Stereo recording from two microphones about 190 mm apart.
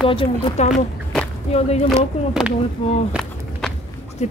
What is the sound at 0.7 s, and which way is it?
Walk, 5° left (ahead or behind).